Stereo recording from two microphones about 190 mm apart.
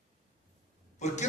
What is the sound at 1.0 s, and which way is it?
Speech, 40° left (ahead or behind).